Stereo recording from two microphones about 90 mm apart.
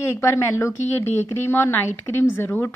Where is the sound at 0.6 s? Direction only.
25° left (ahead or behind).